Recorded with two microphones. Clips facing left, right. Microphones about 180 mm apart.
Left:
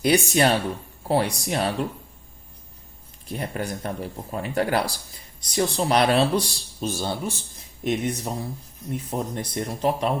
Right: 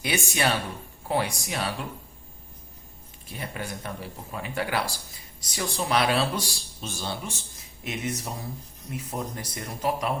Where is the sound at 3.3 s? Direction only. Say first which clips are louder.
Left 6 dB; 40° left (ahead or behind).